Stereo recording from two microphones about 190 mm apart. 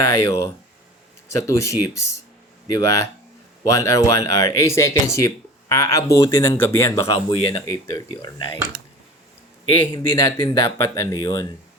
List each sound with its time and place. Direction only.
0.0 s speech: 15° left (ahead or behind)
9.8 s speech: 15° left (ahead or behind)